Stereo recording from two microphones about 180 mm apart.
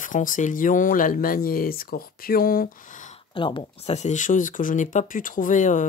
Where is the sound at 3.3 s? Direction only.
25° left (ahead or behind).